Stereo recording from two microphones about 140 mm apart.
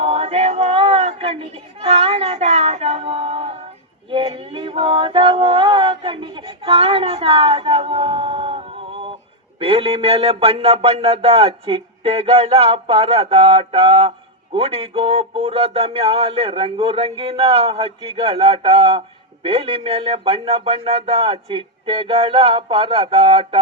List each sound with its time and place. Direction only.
0.0 s speech: 45° right (ahead or behind)
4.1 s female singing: 40° right (ahead or behind)
9.6 s a sound: 40° right (ahead or behind)